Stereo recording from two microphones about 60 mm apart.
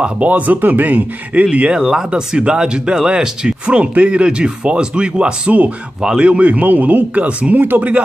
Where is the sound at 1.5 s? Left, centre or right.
Centre.